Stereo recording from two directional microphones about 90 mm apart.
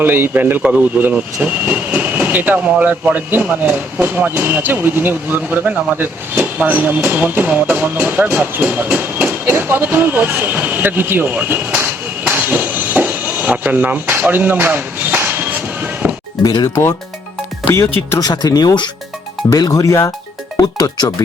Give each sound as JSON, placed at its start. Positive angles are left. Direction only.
{"t": 0.0, "sound": "speech", "side_deg": -20}
{"t": 16.4, "sound": "speech", "side_deg": 45}
{"t": 17.7, "sound": "speech", "side_deg": 30}
{"t": 18.2, "sound": "speech", "side_deg": 45}
{"t": 20.6, "sound": "speech", "side_deg": 45}